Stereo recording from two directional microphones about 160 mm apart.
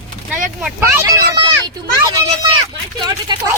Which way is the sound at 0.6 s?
10° right (ahead or behind).